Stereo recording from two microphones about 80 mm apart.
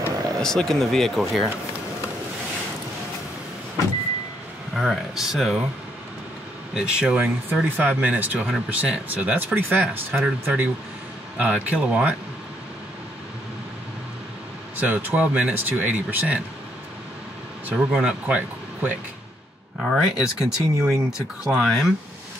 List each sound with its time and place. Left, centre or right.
0.4 s speech: centre
4.7 s speech: centre
6.7 s speech: centre
7.7 s speech: right
14.8 s speech: right
17.6 s speech: centre
19.8 s speech: centre